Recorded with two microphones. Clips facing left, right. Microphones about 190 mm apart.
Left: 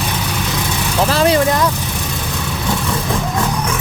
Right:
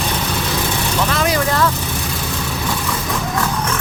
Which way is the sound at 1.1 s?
30° left (ahead or behind).